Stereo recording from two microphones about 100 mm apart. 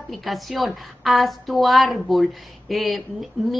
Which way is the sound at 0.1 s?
Centre (ahead or behind).